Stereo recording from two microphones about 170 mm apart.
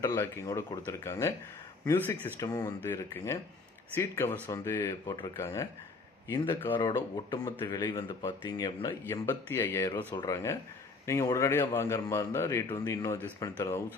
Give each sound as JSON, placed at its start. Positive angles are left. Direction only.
{"t": 0.0, "sound": "a man's voice", "side_deg": 20}
{"t": 7.3, "sound": "a man's voice", "side_deg": 25}